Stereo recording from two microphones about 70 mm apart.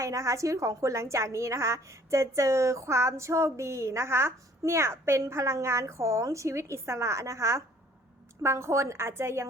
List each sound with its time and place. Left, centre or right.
0.0 s a woman's voice: right